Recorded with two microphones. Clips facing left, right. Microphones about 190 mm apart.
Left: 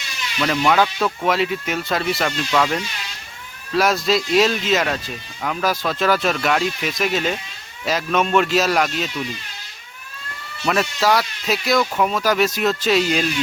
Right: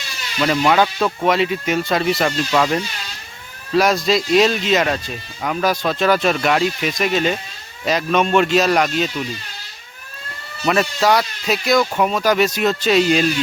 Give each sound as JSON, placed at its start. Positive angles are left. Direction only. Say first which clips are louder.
{"t": 0.3, "sound": "speech", "louder": "right 2 dB", "side_deg": -5}
{"t": 10.7, "sound": "speech", "louder": "right 2 dB", "side_deg": 0}